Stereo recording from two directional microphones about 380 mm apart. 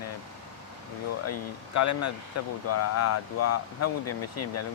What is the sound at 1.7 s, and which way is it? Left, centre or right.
Speech, left.